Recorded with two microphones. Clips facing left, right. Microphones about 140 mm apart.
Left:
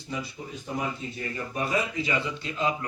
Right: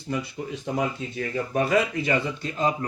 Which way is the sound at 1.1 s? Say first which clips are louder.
Right 7 dB; 90° right.